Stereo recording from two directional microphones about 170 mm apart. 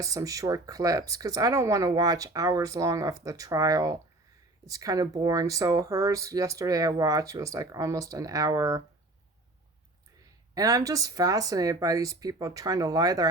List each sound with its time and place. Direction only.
0.0 s speech: 20° right (ahead or behind)
10.5 s speech: 20° right (ahead or behind)